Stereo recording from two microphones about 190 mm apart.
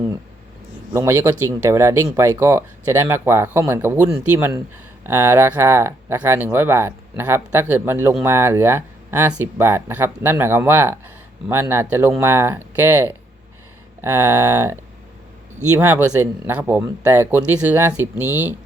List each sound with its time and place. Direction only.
0.9 s speech: 15° right (ahead or behind)